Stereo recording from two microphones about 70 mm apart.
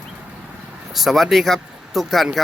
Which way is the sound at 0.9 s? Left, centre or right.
Centre.